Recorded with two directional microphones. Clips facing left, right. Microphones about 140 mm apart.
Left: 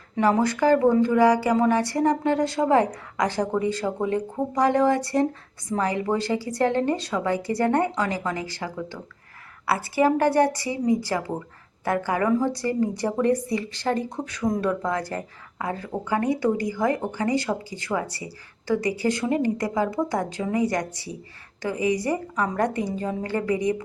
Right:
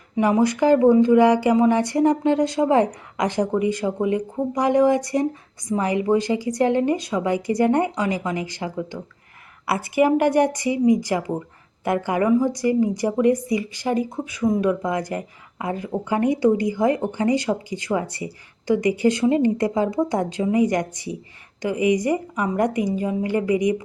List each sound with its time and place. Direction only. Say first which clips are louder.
0.2 s a woman's voice: right 2 dB; 15° right (ahead or behind)